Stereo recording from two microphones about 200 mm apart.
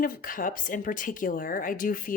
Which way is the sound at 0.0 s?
45° left (ahead or behind).